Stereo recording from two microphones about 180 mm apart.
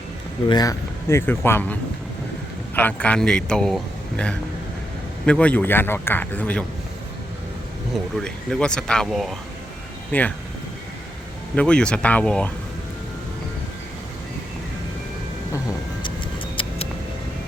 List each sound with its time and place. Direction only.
0.4 s a man's voice: 20° left (ahead or behind); by 3.8 s 5° left (ahead or behind)
5.2 s a man's voice: 5° left (ahead or behind)
8.1 s speech: 5° left (ahead or behind)
11.5 s speech: 5° left (ahead or behind)
16.6 s a sound: 35° left (ahead or behind)